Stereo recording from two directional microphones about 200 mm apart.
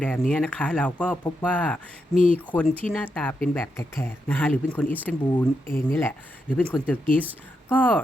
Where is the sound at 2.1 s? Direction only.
30° right (ahead or behind).